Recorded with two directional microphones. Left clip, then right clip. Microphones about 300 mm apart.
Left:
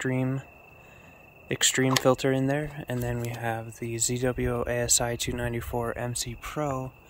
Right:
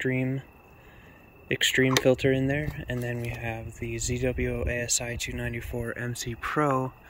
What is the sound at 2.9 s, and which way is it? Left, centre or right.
Speech, centre.